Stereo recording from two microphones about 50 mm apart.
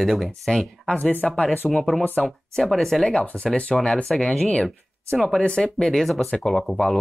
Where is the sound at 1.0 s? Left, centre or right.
Left.